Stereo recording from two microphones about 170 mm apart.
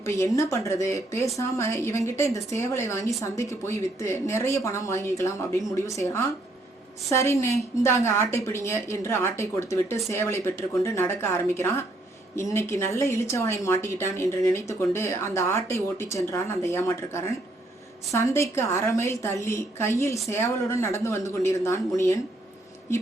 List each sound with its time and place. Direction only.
0.0 s speech: 15° left (ahead or behind)